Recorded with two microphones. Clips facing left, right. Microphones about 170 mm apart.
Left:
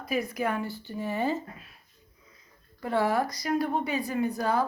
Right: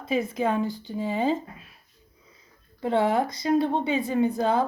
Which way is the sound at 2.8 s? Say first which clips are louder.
Right 3 dB; 20° right (ahead or behind).